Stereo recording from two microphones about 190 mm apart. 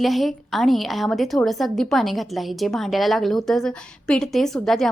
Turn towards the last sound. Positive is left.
turn(degrees=0)  # may be behind; listen again after turning